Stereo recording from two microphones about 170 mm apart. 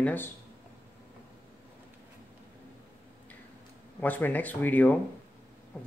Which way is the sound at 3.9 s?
10° left (ahead or behind).